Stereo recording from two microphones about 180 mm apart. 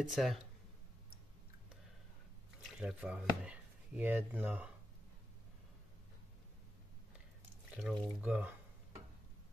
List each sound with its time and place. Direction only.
0.0 s speech: centre (ahead or behind)
2.8 s speech: 5° right (ahead or behind)
7.7 s speech: 5° right (ahead or behind)